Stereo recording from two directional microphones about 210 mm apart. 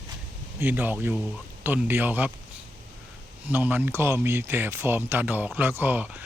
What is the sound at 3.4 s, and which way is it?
Speech, 10° right (ahead or behind).